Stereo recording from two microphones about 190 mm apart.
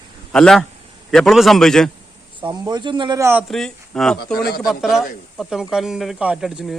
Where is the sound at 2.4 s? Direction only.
25° right (ahead or behind).